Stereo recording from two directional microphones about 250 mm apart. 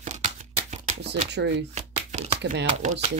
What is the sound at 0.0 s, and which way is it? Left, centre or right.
Shuffling cards, right.